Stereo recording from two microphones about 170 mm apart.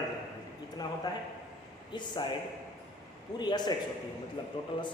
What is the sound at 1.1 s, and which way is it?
Speech, 25° left (ahead or behind).